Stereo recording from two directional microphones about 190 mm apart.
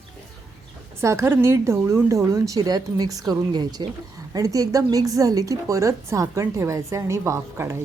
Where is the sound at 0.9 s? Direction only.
15° right (ahead or behind).